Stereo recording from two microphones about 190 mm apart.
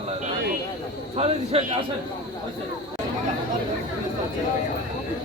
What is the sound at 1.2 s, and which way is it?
Speech, 30° right (ahead or behind).